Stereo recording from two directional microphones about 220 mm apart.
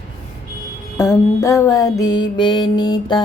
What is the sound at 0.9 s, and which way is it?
Music, 15° left (ahead or behind).